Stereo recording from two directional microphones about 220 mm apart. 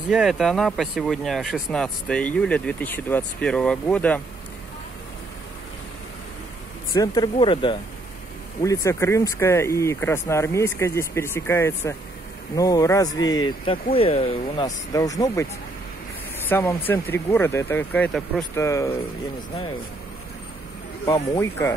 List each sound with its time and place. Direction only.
0.1 s speech: centre (ahead or behind)
6.9 s speech: 20° left (ahead or behind)
21.0 s speech: 10° left (ahead or behind)